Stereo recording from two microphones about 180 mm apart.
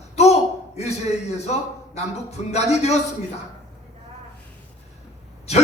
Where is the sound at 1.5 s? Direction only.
40° left (ahead or behind).